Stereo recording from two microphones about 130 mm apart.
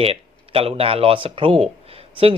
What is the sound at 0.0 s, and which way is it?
Speech, 50° right (ahead or behind).